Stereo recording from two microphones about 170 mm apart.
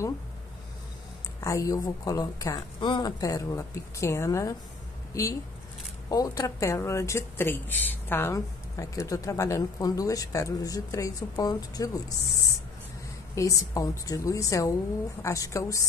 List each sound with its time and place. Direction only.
1.4 s speech: 20° left (ahead or behind)
13.3 s speech: 20° left (ahead or behind)